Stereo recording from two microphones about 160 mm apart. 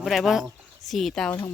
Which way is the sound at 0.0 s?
Centre (ahead or behind).